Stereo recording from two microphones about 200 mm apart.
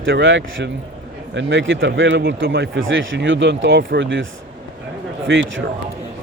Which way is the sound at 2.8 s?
70° right (ahead or behind).